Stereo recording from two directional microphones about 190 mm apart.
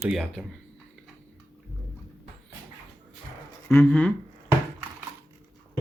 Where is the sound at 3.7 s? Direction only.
10° left (ahead or behind).